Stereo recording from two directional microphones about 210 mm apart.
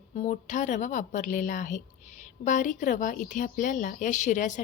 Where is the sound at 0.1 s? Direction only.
35° left (ahead or behind).